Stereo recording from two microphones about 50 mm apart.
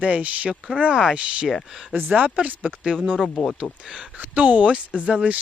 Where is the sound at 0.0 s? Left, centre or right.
Right.